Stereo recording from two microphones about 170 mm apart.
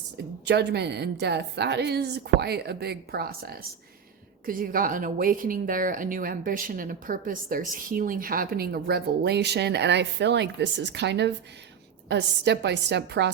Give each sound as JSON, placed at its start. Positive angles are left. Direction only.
{"t": 0.4, "sound": "a woman's voice", "side_deg": -90}
{"t": 12.0, "sound": "a woman's voice", "side_deg": -80}